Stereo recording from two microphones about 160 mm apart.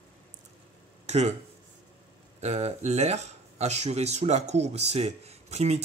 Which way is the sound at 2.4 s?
40° right (ahead or behind).